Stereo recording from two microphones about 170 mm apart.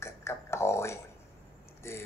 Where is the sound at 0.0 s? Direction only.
15° left (ahead or behind).